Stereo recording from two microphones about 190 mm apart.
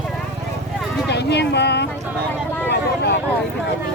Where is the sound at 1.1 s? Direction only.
60° left (ahead or behind).